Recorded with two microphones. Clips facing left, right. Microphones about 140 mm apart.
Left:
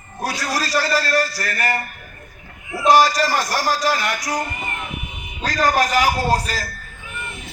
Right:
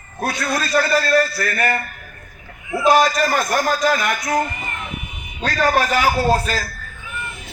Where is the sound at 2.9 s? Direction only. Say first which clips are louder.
Even; 35° left (ahead or behind).